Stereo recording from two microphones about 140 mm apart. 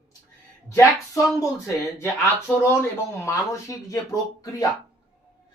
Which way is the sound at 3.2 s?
20° left (ahead or behind).